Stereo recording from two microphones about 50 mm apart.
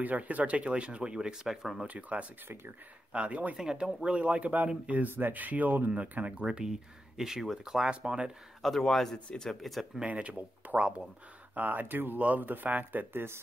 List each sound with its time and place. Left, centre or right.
0.0 s speech: right; by 1.7 s centre
1.9 s speech: right
2.4 s speech: right
3.1 s speech: right
6.4 s speech: centre
7.9 s speech: right
8.6 s speech: centre
9.6 s speech: centre
10.0 s speech: right
11.5 s speech: right